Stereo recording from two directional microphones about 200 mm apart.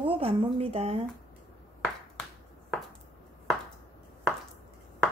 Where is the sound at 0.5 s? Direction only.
30° right (ahead or behind).